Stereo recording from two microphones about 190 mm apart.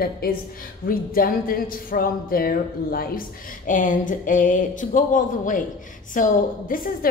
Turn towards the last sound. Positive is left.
turn(degrees=50)  # may be behind; listen again after turning